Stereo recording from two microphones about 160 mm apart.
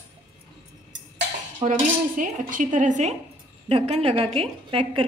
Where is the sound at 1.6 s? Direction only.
55° right (ahead or behind).